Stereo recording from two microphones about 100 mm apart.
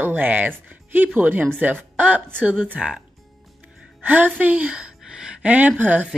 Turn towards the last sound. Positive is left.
turn(degrees=-15)  # may be behind; listen again after turning